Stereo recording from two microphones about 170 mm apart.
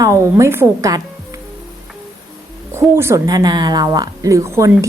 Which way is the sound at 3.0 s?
15° right (ahead or behind).